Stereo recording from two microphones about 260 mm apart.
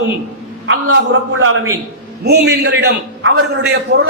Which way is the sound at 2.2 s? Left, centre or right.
Right.